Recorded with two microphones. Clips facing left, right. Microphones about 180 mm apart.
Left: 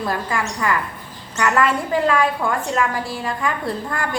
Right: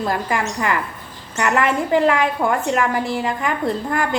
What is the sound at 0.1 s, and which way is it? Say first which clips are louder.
A woman's voice: right 2 dB; 20° right (ahead or behind).